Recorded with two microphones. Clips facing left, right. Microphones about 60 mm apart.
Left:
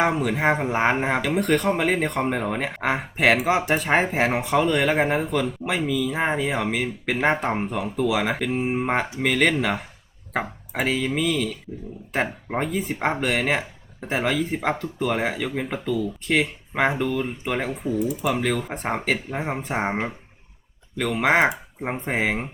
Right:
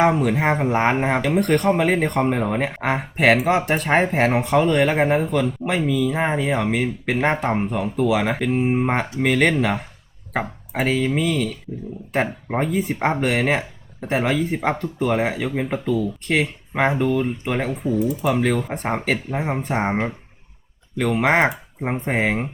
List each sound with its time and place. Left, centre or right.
0.0 s speech: centre